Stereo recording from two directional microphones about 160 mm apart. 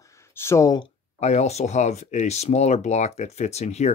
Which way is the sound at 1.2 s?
45° left (ahead or behind).